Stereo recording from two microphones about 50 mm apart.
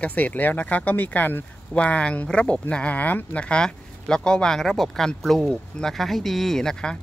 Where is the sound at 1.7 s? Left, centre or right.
Left.